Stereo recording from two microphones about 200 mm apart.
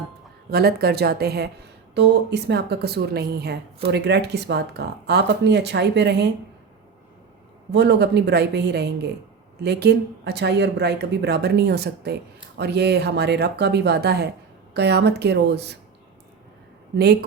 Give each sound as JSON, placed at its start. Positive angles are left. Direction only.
{"t": 0.5, "sound": "a woman's voice", "side_deg": -50}
{"t": 7.7, "sound": "a woman's voice", "side_deg": -60}
{"t": 17.0, "sound": "a woman's voice", "side_deg": -55}